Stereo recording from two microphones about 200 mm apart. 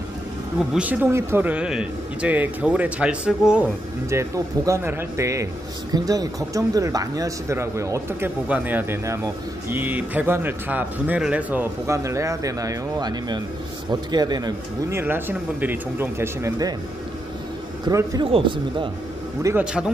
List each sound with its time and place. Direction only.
0.7 s speech: 10° right (ahead or behind)
17.8 s speech: 20° right (ahead or behind)
19.4 s speech: 5° right (ahead or behind)